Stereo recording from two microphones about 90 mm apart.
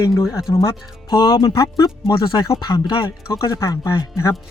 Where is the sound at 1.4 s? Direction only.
45° left (ahead or behind).